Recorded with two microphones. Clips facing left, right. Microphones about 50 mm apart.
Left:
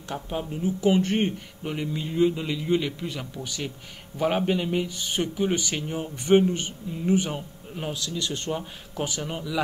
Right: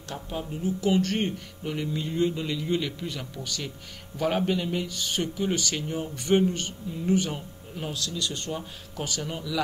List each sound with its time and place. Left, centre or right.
0.1 s speech: left